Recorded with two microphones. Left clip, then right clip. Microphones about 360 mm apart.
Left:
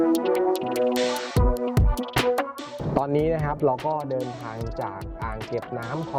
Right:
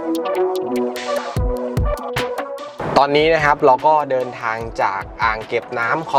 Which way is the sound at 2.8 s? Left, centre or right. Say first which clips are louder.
Right 10 dB; centre.